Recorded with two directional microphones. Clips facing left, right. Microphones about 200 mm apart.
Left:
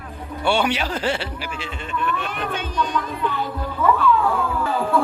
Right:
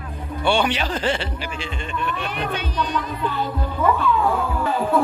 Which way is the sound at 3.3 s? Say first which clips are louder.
Right 1 dB; 20° right (ahead or behind).